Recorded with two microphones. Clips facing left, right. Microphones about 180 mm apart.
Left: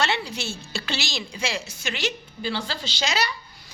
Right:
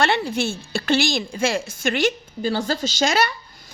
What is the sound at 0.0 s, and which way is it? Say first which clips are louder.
A woman's voice: right 6 dB; 55° right (ahead or behind).